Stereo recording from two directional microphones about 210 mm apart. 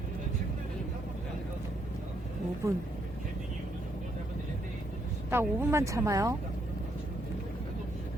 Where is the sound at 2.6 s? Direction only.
15° right (ahead or behind).